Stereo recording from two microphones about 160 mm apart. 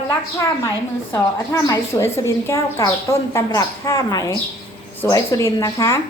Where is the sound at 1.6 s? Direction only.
20° left (ahead or behind).